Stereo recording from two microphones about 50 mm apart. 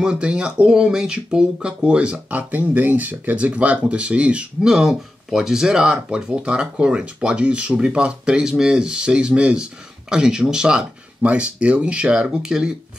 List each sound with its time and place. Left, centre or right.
0.0 s speech: right
2.5 s speech: right
4.6 s speech: centre